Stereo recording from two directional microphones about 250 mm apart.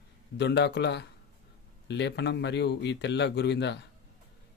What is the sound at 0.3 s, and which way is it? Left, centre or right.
Speech, left.